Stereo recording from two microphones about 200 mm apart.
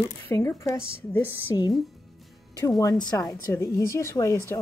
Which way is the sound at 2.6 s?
20° left (ahead or behind).